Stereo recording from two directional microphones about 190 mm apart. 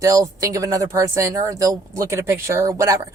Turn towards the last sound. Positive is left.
turn(degrees=-15)  # may be behind; listen again after turning